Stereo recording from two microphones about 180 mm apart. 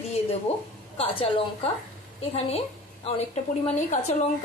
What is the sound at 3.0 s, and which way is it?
A woman's voice, 35° left (ahead or behind).